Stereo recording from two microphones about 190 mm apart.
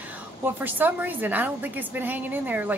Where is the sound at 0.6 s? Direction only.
10° right (ahead or behind).